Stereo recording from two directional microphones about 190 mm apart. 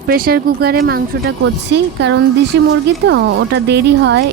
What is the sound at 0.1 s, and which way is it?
Speech, 50° right (ahead or behind).